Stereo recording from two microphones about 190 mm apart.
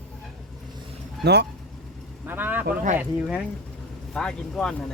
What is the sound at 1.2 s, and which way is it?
Speech, 60° right (ahead or behind).